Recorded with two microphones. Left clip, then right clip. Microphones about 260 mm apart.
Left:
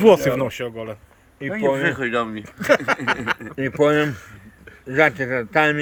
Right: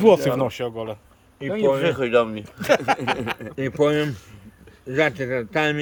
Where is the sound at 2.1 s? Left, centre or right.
Right.